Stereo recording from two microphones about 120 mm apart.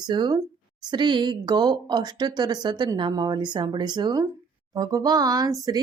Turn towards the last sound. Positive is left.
turn(degrees=-30)  # may be behind; listen again after turning